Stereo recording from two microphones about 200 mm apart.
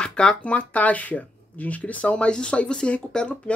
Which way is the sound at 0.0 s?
5° left (ahead or behind).